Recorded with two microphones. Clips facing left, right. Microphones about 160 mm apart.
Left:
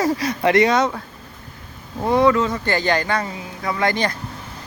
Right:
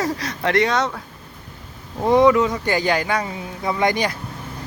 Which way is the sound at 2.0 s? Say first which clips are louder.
Right 2 dB; 20° right (ahead or behind).